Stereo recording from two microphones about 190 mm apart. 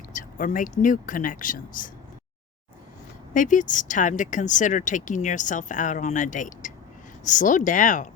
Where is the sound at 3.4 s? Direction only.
45° left (ahead or behind).